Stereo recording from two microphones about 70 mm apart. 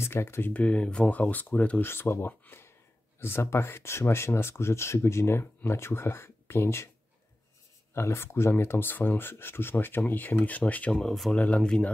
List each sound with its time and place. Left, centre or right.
0.0 s speech: left
0.5 s speech: centre
1.9 s speech: left
7.9 s speech: left
11.0 s speech: centre
11.3 s speech: centre